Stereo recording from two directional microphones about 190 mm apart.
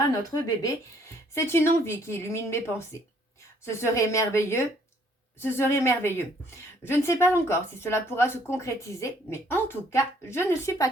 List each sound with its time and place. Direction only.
0.2 s a woman's voice: 20° left (ahead or behind)